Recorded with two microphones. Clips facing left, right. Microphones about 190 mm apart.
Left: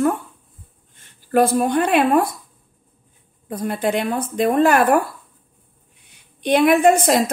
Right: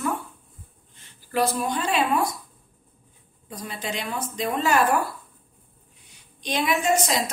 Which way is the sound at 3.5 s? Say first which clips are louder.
Left 11 dB; 55° left (ahead or behind).